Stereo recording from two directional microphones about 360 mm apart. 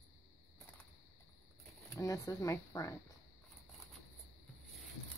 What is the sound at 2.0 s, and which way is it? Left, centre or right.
Speech, centre.